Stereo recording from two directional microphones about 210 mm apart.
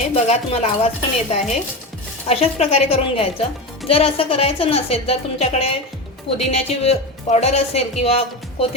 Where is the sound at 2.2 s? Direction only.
30° left (ahead or behind).